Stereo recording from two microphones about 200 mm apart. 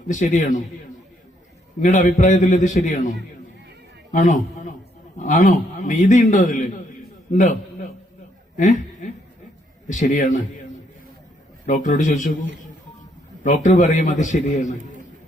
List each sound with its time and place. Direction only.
0.1 s a man's voice: 40° left (ahead or behind)
1.8 s a man's voice: 40° left (ahead or behind)
4.1 s a man's voice: 40° left (ahead or behind)
8.5 s a sound: 40° left (ahead or behind)
9.9 s a man's voice: 40° left (ahead or behind)
11.6 s a man's voice: 40° left (ahead or behind)
13.4 s a man's voice: 40° left (ahead or behind)